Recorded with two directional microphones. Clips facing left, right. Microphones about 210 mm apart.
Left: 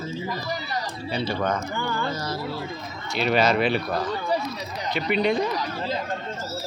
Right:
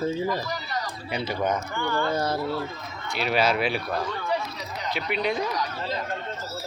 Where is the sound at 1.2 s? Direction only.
20° right (ahead or behind).